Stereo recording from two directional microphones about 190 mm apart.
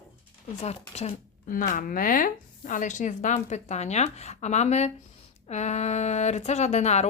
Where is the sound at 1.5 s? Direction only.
45° left (ahead or behind).